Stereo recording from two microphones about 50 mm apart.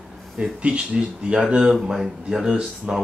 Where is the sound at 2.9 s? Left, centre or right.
Right.